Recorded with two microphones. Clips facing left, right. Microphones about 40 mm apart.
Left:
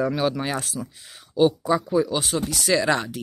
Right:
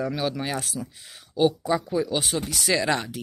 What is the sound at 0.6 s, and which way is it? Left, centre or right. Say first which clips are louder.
Speech: left 1 dB; centre.